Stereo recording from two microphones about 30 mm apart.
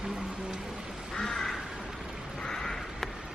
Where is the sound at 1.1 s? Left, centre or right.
Centre.